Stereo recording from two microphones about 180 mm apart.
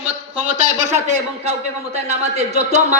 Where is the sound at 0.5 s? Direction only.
40° right (ahead or behind).